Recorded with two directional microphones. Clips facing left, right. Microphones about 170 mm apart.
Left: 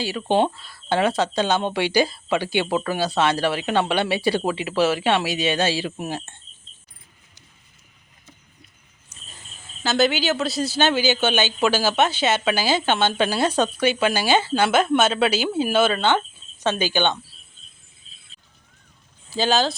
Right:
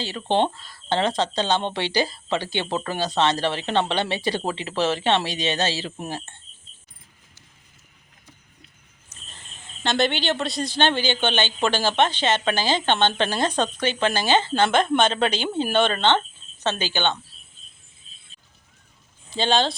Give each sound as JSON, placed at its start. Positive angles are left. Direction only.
{"t": 0.0, "sound": "speech", "side_deg": 10}
{"t": 9.0, "sound": "speech", "side_deg": 10}
{"t": 19.3, "sound": "speech", "side_deg": 5}